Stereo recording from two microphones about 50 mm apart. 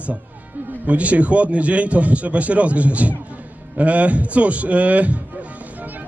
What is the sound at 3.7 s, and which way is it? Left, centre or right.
Music, right.